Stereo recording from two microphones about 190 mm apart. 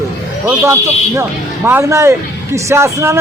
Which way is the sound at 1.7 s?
15° right (ahead or behind).